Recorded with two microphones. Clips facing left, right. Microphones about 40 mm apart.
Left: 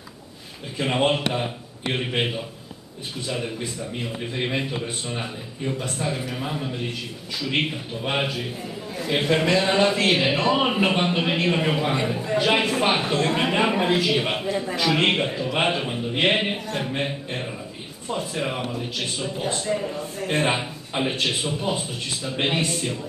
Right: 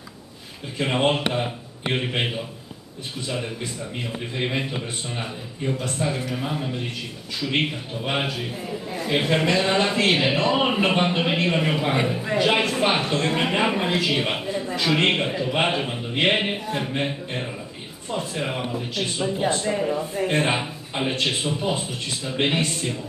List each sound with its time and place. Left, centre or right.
0.7 s a man's voice: centre
19.6 s speech: centre
20.2 s a man's voice: centre